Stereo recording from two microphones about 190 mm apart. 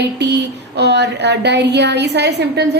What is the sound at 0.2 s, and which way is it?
A woman's voice, 65° right (ahead or behind).